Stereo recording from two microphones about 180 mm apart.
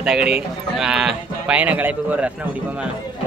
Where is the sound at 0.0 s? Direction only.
5° right (ahead or behind).